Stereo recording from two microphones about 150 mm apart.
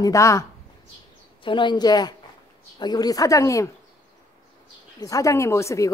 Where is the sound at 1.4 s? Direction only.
30° left (ahead or behind).